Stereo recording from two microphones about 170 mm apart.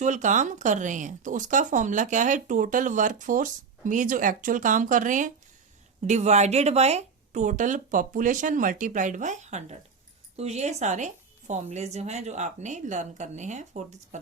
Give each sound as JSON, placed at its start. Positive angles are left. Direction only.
{"t": 0.0, "sound": "speech", "side_deg": -45}